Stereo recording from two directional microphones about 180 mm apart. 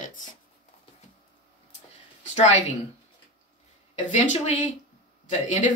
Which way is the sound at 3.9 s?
40° left (ahead or behind).